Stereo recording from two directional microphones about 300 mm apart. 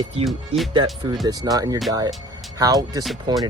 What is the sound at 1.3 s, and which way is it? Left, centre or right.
Speech, centre.